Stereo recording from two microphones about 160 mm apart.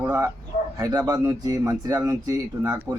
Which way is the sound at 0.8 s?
20° right (ahead or behind).